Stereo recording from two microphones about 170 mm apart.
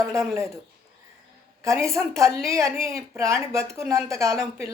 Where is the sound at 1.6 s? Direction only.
15° right (ahead or behind).